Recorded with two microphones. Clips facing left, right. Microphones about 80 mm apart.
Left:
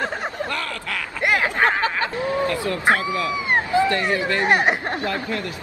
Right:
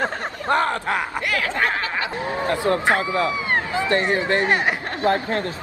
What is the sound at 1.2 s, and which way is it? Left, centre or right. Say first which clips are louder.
Snicker: left 8 dB; left.